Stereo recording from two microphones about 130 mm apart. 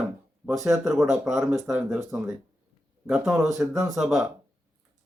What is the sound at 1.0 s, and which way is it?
Speech, 5° right (ahead or behind).